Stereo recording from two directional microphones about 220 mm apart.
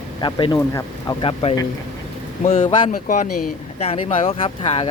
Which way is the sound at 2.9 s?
35° left (ahead or behind).